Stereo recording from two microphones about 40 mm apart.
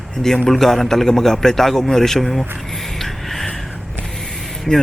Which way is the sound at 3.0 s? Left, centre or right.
Centre.